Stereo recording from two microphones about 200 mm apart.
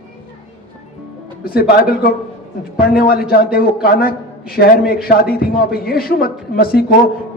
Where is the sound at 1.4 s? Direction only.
50° left (ahead or behind).